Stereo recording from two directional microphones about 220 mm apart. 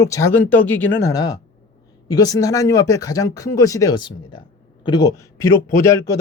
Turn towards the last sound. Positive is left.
turn(degrees=15)  # may be behind; listen again after turning